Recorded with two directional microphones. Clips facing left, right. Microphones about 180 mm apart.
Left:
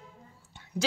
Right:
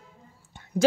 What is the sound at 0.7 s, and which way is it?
Speech, 50° right (ahead or behind).